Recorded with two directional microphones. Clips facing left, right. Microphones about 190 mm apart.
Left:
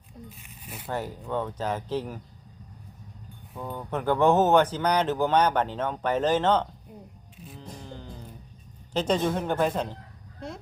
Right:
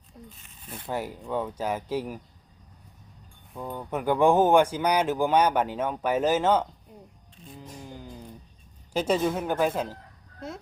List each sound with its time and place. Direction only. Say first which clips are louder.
0.3 s zipper: even; 10° left (ahead or behind)
0.9 s speech: even; 10° right (ahead or behind)
3.6 s speech: even; 10° right (ahead or behind)
7.9 s music: even; 10° right (ahead or behind)
8.9 s speech: even; 10° right (ahead or behind)